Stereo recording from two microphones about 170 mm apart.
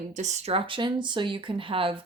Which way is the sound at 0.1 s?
45° right (ahead or behind).